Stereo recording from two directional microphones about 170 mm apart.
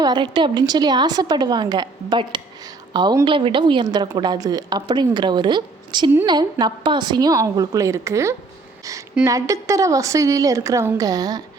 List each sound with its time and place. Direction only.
0.0 s a woman's voice: 25° right (ahead or behind)